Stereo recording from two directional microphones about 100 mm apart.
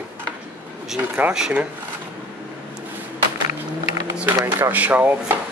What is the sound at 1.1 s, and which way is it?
Speech, 10° right (ahead or behind).